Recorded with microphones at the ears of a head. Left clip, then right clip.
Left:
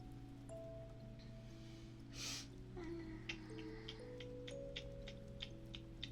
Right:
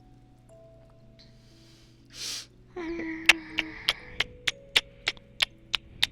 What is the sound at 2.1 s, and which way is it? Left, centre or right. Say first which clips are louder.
Music: right 12 dB; right.